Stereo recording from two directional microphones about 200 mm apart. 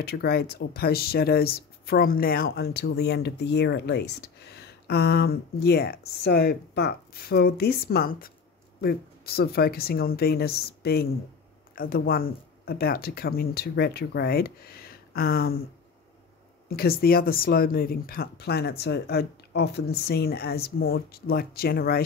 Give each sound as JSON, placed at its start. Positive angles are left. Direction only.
{"t": 0.0, "sound": "speech", "side_deg": 50}
{"t": 16.6, "sound": "speech", "side_deg": 50}